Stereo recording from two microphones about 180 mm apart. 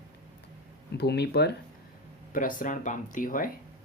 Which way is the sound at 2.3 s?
50° left (ahead or behind).